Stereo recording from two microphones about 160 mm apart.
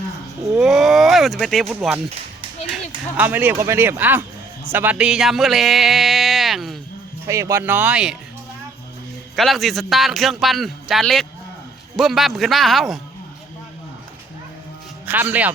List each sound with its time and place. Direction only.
0.5 s cattle: centre (ahead or behind)
2.7 s speech: 10° right (ahead or behind)
7.3 s speech: 20° right (ahead or behind)
9.3 s speech: centre (ahead or behind)
15.0 s speech: 10° right (ahead or behind)